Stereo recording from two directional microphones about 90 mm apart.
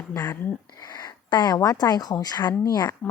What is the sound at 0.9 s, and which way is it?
Speech, 55° left (ahead or behind).